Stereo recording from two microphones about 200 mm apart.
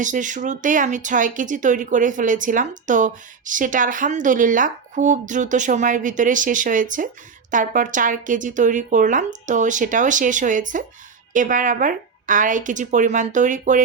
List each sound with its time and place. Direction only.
0.0 s speech: 40° right (ahead or behind)